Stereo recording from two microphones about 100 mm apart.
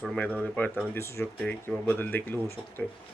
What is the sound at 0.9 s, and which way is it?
Speech, 25° left (ahead or behind).